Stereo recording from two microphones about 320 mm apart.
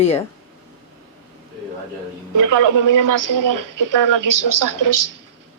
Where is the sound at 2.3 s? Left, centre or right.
Right.